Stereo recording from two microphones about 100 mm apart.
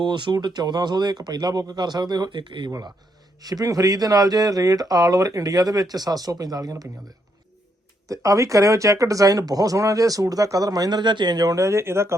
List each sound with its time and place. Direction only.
0.0 s speech: 50° right (ahead or behind)
3.4 s speech: 40° right (ahead or behind)
8.0 s speech: 35° right (ahead or behind)